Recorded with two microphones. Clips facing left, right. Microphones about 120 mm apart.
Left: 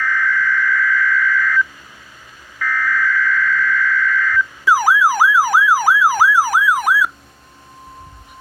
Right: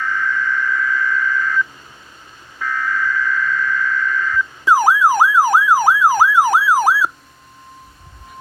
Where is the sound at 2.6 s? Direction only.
20° right (ahead or behind).